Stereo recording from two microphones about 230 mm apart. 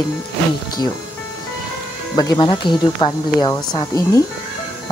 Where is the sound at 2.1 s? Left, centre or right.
Centre.